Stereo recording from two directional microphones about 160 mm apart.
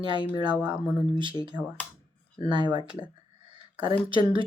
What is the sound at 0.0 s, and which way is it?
Speech, 30° right (ahead or behind).